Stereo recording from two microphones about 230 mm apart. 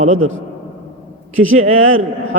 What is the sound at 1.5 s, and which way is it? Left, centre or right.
Speech, right.